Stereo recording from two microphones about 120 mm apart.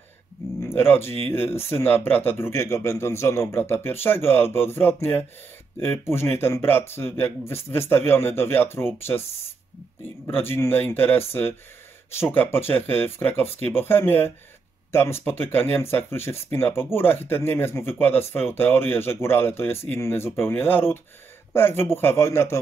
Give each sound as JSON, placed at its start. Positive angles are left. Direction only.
{"t": 0.6, "sound": "speech", "side_deg": 20}
{"t": 10.2, "sound": "speech", "side_deg": 20}